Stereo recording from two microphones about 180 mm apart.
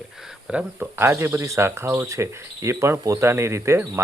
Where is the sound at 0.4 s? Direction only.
5° right (ahead or behind).